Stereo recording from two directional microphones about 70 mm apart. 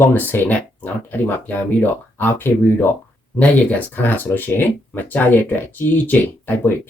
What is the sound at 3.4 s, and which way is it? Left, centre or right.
Speech, left.